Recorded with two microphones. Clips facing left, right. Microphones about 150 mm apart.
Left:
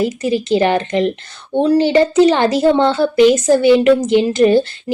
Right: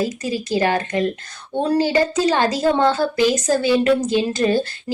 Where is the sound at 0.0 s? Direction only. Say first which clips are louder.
Left 6 dB; 20° left (ahead or behind).